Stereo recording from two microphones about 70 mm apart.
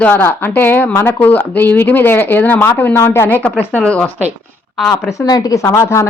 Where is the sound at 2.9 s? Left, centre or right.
Left; by 4.1 s centre.